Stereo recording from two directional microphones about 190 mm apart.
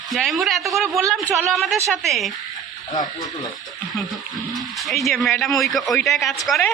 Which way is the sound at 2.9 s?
20° left (ahead or behind).